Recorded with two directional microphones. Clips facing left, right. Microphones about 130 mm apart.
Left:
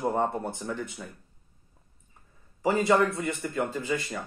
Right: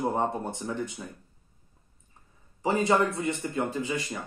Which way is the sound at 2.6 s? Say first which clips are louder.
Left 1 dB; 20° right (ahead or behind).